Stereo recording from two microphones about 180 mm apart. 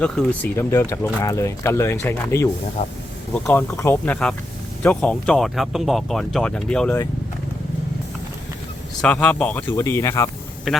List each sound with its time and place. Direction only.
0.0 s speech: 10° left (ahead or behind)
9.0 s speech: 5° left (ahead or behind)
10.7 s speech: centre (ahead or behind)